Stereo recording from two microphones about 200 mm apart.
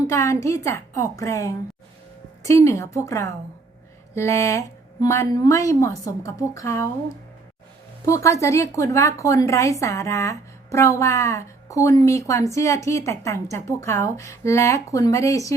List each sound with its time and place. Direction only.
0.1 s a woman's voice: 15° left (ahead or behind)